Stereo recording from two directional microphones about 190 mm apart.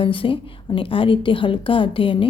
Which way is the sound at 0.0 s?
25° left (ahead or behind).